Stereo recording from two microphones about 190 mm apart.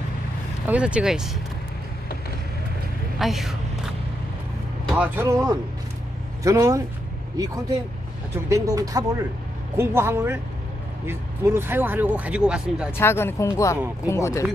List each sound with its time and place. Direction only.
0.7 s speech: 5° right (ahead or behind)
3.2 s a sound: centre (ahead or behind)
4.9 s speech: 10° right (ahead or behind)
8.5 s speech: 15° right (ahead or behind)
12.9 s speech: 10° left (ahead or behind)